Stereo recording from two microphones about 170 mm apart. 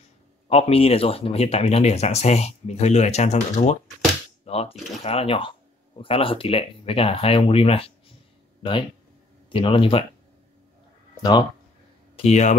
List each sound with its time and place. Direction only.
0.5 s speech: 35° left (ahead or behind)
9.5 s speech: 30° left (ahead or behind)
12.2 s speech: 40° left (ahead or behind)